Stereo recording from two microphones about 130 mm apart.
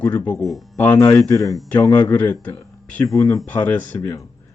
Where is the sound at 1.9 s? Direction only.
15° left (ahead or behind).